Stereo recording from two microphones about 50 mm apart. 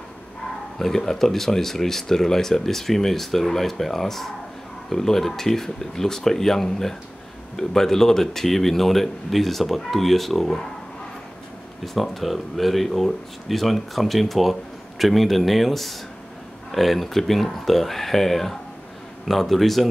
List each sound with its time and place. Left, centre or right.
0.7 s speech: centre
11.8 s speech: centre